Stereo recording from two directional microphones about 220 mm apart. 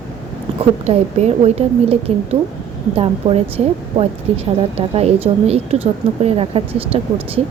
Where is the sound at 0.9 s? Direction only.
30° right (ahead or behind).